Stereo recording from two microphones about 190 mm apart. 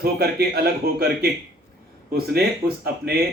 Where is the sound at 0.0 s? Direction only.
55° right (ahead or behind).